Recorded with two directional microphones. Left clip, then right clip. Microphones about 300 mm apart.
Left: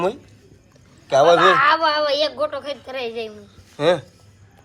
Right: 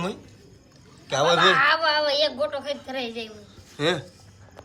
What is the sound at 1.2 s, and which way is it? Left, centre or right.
A woman's voice, centre.